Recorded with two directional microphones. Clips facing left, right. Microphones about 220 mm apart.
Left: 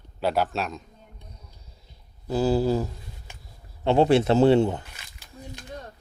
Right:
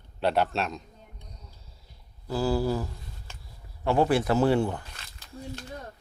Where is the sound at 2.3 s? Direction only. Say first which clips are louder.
Left 4 dB; 20° left (ahead or behind).